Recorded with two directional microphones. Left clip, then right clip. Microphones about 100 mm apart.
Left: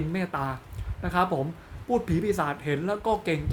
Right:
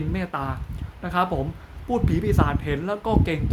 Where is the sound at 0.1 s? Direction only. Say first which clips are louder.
Right 2 dB; 10° right (ahead or behind).